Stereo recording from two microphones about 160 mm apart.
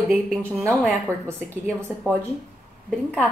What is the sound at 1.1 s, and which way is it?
Speech, 15° right (ahead or behind).